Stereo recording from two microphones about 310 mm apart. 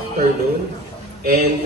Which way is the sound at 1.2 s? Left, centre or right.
Right.